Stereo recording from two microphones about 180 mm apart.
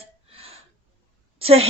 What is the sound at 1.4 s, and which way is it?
Speech, 30° right (ahead or behind).